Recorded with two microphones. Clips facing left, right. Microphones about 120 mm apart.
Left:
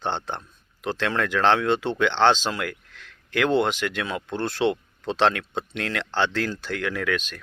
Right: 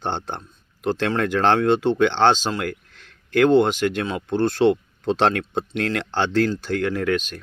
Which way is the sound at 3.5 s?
Centre (ahead or behind).